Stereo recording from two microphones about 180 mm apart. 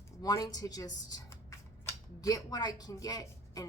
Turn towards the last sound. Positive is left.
turn(degrees=20)  # may be behind; listen again after turning